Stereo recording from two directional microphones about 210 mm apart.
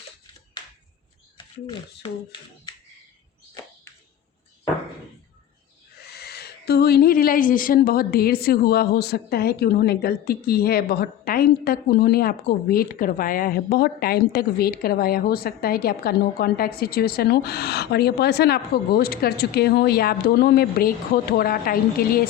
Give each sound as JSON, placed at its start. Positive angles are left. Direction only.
{"t": 6.1, "sound": "a woman's voice", "side_deg": 50}